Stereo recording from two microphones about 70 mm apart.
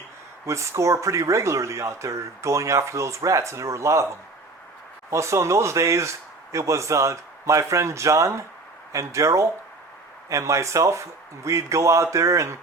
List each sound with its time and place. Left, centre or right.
0.4 s speech: right